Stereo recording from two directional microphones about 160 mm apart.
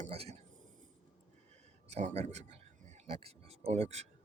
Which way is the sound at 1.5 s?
45° right (ahead or behind).